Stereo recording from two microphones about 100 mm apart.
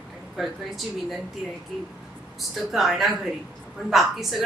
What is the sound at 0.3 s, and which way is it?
Speech, 5° right (ahead or behind).